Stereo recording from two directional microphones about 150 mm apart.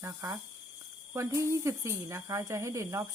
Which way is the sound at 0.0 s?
20° right (ahead or behind).